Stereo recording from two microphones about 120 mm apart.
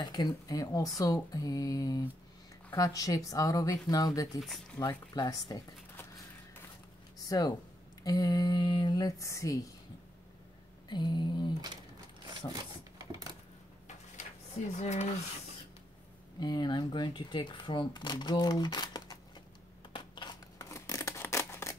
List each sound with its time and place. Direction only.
0.0 s speech: 35° left (ahead or behind)
7.2 s speech: 30° left (ahead or behind)
10.9 s speech: 40° left (ahead or behind)
13.8 s a sound: 75° left (ahead or behind)
16.3 s speech: 35° left (ahead or behind)
19.9 s a sound: 45° left (ahead or behind)
20.5 s scissors: 30° left (ahead or behind)